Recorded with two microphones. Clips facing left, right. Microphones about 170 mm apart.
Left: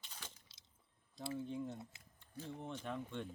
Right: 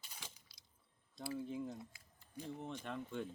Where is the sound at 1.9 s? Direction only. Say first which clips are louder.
Left 2 dB; 25° left (ahead or behind).